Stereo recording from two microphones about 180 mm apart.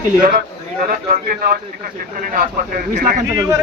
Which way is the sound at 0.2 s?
55° right (ahead or behind).